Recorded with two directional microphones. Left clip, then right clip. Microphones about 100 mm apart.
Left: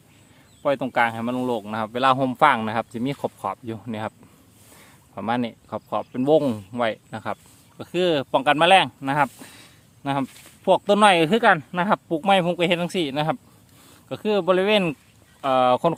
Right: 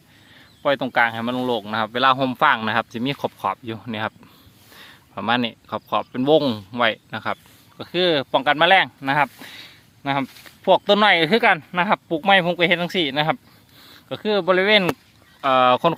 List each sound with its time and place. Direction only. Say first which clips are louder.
0.6 s speech: right 2 dB; 10° left (ahead or behind)
7.8 s speech: right 2 dB; 20° left (ahead or behind)
15.4 s speech: right 3 dB; 10° left (ahead or behind)